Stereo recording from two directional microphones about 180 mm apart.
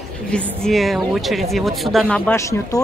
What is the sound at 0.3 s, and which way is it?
Speech, 5° left (ahead or behind).